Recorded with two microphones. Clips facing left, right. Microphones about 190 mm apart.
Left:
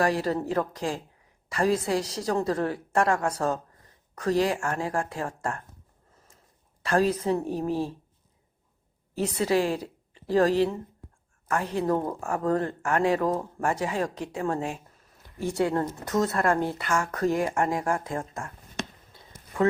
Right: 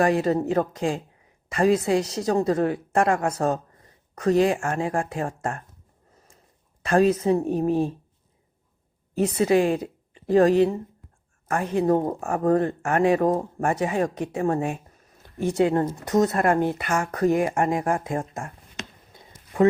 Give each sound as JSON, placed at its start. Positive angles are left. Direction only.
{"t": 0.0, "sound": "speech", "side_deg": -20}
{"t": 6.8, "sound": "speech", "side_deg": -20}
{"t": 9.3, "sound": "a woman's voice", "side_deg": -20}
{"t": 19.1, "sound": "a sound", "side_deg": -20}